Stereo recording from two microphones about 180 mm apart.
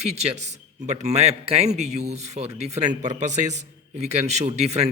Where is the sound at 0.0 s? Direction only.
35° right (ahead or behind).